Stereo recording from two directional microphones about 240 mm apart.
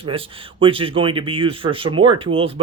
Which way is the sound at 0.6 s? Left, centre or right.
Right.